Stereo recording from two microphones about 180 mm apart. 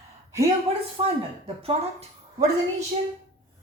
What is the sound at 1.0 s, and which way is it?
Speech, 25° right (ahead or behind).